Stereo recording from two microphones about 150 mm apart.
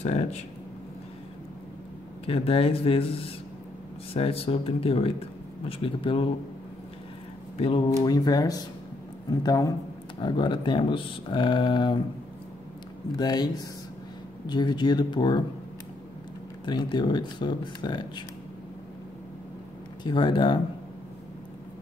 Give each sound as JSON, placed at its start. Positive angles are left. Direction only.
{"t": 0.0, "sound": "speech", "side_deg": 45}
{"t": 2.2, "sound": "speech", "side_deg": 40}
{"t": 7.5, "sound": "speech", "side_deg": 40}
{"t": 8.0, "sound": "speech", "side_deg": 25}
{"t": 13.2, "sound": "speech", "side_deg": 25}
{"t": 16.6, "sound": "speech", "side_deg": 30}
{"t": 20.0, "sound": "speech", "side_deg": 30}